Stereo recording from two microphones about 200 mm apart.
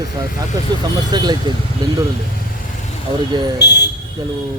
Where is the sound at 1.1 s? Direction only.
20° right (ahead or behind).